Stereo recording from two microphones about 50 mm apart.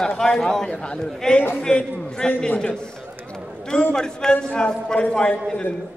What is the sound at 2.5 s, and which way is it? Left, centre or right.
Speech, left.